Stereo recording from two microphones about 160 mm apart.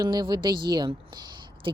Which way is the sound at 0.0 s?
25° right (ahead or behind).